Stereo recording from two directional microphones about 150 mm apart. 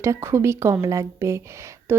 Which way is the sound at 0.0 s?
20° right (ahead or behind).